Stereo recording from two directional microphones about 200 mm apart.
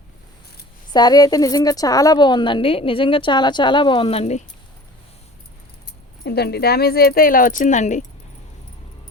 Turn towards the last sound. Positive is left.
turn(degrees=35)  # may be behind; listen again after turning